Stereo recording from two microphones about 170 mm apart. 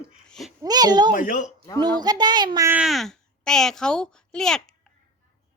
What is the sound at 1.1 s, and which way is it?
Speech, 50° left (ahead or behind).